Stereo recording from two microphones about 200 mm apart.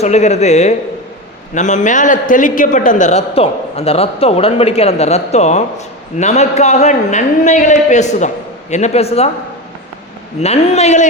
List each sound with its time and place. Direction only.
0.0 s a man's voice: 35° left (ahead or behind)
10.4 s a man's voice: 35° left (ahead or behind)